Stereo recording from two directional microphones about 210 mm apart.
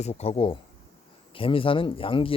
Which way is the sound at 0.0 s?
30° left (ahead or behind).